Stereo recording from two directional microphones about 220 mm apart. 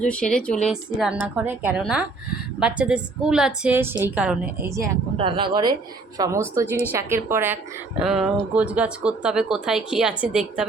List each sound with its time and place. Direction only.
0.0 s speech: 5° left (ahead or behind)
5.1 s speech: 25° right (ahead or behind); by 10.7 s 5° right (ahead or behind)